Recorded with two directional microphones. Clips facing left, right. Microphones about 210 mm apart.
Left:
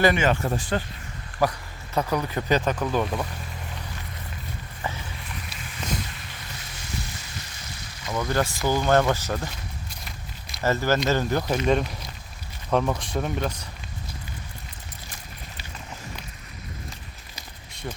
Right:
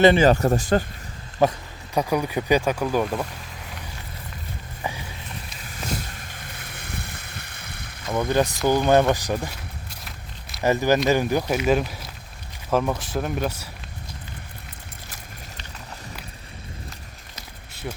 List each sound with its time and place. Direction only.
0.0 s speech: 30° right (ahead or behind)
1.4 s speech: 20° right (ahead or behind)
4.8 s a sound: 15° right (ahead or behind)
6.3 s a sound: 55° right (ahead or behind)
8.1 s speech: 20° right (ahead or behind)
10.0 s walk: centre (ahead or behind)
10.6 s speech: 15° right (ahead or behind)
17.9 s speech: 5° right (ahead or behind)